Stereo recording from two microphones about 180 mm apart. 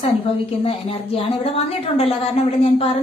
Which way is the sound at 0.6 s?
30° left (ahead or behind).